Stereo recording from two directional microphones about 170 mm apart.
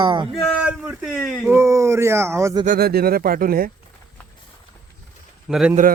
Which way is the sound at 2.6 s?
60° right (ahead or behind).